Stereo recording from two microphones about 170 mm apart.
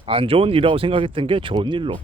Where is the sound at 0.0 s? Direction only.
30° right (ahead or behind).